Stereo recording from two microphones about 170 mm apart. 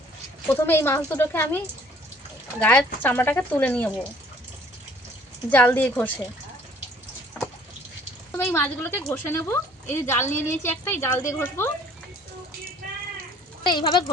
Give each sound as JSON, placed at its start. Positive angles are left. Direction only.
{"t": 0.5, "sound": "speech", "side_deg": 15}
{"t": 5.5, "sound": "speech", "side_deg": 10}
{"t": 8.3, "sound": "speech", "side_deg": 15}
{"t": 12.8, "sound": "a sound", "side_deg": -55}
{"t": 13.7, "sound": "speech", "side_deg": 25}